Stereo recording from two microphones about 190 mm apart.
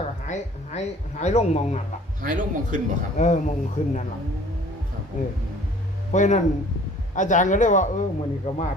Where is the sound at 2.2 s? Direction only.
45° right (ahead or behind).